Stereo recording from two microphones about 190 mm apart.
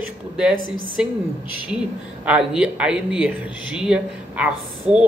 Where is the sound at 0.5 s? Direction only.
90° right.